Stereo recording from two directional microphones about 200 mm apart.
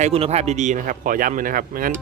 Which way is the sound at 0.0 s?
30° right (ahead or behind).